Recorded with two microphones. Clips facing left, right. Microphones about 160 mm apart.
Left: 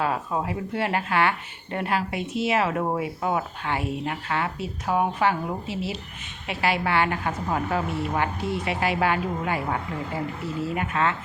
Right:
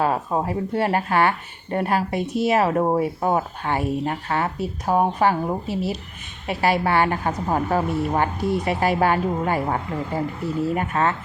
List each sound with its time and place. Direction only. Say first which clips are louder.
0.0 s speech: right 4 dB; 35° right (ahead or behind)